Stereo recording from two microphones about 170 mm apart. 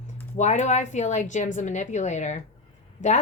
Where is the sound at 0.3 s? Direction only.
45° left (ahead or behind).